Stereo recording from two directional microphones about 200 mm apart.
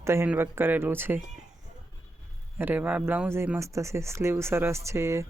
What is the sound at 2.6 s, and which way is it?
Speech, 10° right (ahead or behind).